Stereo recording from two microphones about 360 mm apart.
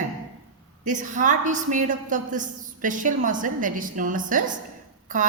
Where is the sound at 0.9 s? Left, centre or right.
Right.